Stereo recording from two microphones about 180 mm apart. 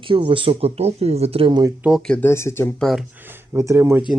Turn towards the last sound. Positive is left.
turn(degrees=-15)  # may be behind; listen again after turning